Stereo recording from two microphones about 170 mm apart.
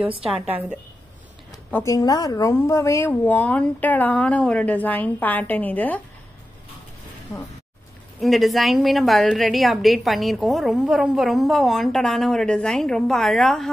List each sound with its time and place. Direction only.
1.7 s speech: 15° left (ahead or behind)
8.2 s a woman's voice: centre (ahead or behind)